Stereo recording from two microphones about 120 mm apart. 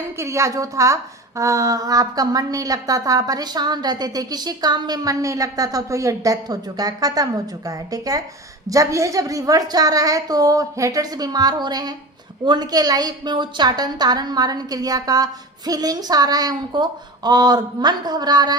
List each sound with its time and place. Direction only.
0.2 s a woman's voice: 25° right (ahead or behind)